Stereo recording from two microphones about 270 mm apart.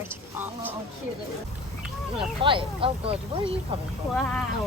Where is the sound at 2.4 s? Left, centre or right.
Centre.